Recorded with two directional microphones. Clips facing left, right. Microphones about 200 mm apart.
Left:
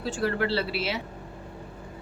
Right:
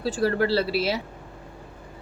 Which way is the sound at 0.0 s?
35° right (ahead or behind).